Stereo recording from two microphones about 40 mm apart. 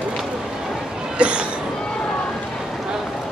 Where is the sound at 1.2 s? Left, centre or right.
Right.